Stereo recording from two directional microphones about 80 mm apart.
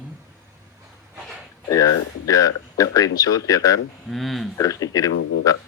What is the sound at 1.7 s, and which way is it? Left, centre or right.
Speech, left.